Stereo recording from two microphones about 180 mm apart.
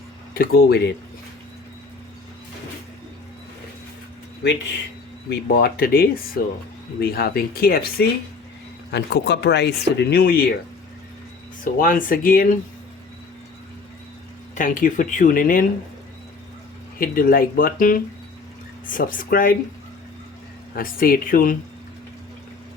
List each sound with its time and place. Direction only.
0.3 s speech: 60° left (ahead or behind)
5.3 s speech: 60° left (ahead or behind)
11.6 s speech: 50° left (ahead or behind)
14.5 s speech: 45° left (ahead or behind)
17.0 s speech: 50° left (ahead or behind)
20.7 s speech: 50° left (ahead or behind)